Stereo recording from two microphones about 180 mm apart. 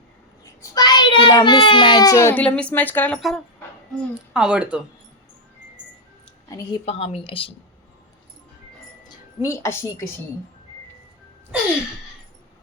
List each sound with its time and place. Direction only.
0.6 s a child's voice: 20° left (ahead or behind); by 4.8 s 5° right (ahead or behind)
6.8 s speech: 35° left (ahead or behind)
9.0 s speech: 15° left (ahead or behind)